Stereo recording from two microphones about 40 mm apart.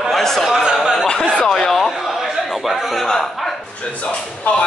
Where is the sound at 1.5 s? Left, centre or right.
Centre.